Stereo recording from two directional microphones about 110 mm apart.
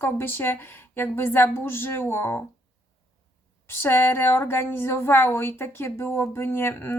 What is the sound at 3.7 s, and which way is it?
A woman's voice, 20° left (ahead or behind).